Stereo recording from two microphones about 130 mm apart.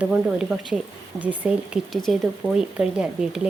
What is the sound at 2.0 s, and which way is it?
Speech, centre (ahead or behind).